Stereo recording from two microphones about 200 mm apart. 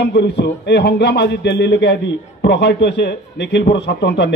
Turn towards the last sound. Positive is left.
turn(degrees=60)  # may be behind; listen again after turning